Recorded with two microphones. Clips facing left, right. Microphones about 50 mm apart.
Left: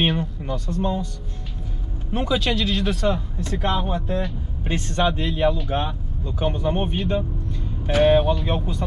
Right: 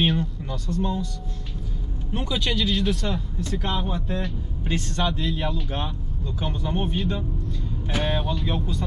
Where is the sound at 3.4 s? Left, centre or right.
Left.